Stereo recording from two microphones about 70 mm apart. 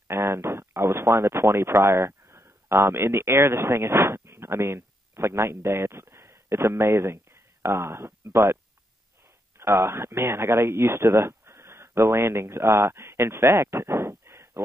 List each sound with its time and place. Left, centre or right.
0.1 s speech: right
9.6 s speech: right